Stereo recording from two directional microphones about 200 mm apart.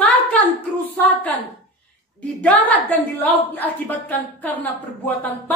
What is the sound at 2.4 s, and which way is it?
A woman's voice, 10° left (ahead or behind).